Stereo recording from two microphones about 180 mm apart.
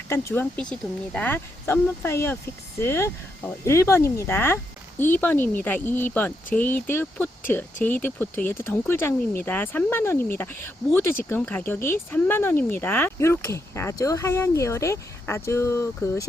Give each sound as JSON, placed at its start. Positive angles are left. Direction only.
{"t": 0.1, "sound": "speech", "side_deg": 15}